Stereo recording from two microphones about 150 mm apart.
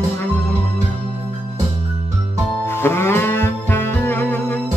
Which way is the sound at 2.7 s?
15° left (ahead or behind).